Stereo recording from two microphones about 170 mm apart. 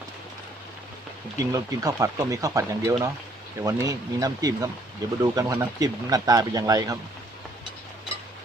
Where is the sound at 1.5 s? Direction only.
20° right (ahead or behind).